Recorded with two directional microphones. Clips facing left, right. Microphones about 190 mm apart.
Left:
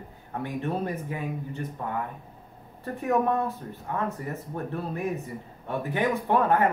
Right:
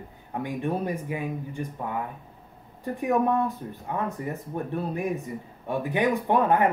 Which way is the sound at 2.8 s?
15° right (ahead or behind).